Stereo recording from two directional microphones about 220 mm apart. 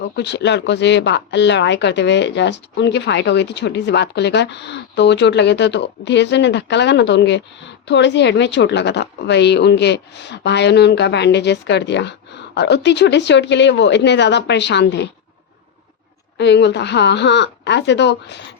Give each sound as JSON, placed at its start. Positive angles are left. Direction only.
{"t": 0.0, "sound": "speech", "side_deg": 50}
{"t": 16.4, "sound": "speech", "side_deg": 50}